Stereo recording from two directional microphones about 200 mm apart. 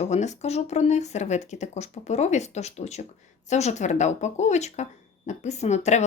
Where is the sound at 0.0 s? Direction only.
35° left (ahead or behind).